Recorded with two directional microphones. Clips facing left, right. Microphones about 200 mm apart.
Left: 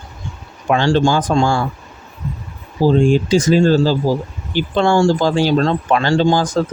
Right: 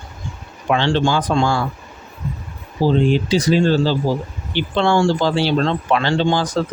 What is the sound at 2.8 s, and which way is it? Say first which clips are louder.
Speech: left 3 dB; 45° left (ahead or behind).